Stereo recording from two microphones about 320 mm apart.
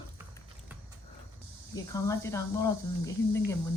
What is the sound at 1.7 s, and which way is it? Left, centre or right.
Speech, centre.